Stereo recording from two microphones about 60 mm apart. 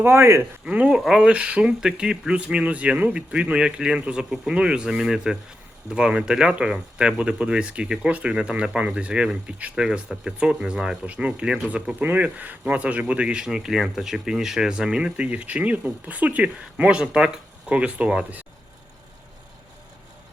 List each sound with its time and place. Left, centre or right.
0.0 s speech: right
0.6 s speech: centre
9.8 s speech: centre
11.0 s speech: right